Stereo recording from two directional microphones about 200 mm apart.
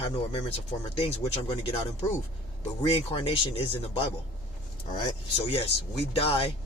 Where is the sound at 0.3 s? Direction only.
30° left (ahead or behind).